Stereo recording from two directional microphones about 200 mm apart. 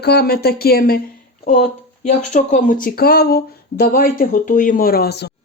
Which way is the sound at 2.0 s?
35° left (ahead or behind).